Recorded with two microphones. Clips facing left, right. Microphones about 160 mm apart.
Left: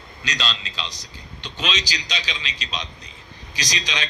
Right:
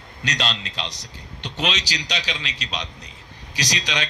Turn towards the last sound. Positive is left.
turn(degrees=-65)  # may be behind; listen again after turning